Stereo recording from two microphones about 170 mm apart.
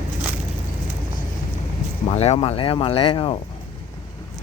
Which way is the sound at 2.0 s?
40° left (ahead or behind).